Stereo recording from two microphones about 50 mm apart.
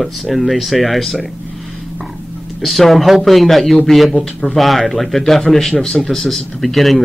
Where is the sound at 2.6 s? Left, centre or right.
Centre.